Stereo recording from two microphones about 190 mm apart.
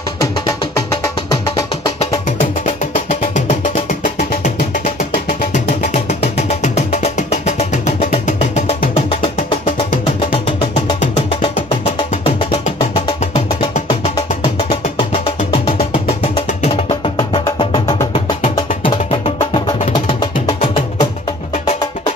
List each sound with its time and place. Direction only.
0.2 s music: 20° left (ahead or behind)
2.0 s music: 35° left (ahead or behind)
10.3 s music: 25° left (ahead or behind)